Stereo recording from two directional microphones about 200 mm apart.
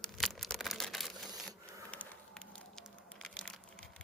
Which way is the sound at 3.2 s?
5° left (ahead or behind).